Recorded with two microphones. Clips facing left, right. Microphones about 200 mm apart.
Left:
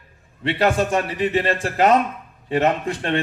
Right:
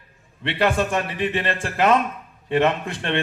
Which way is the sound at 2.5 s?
45° left (ahead or behind).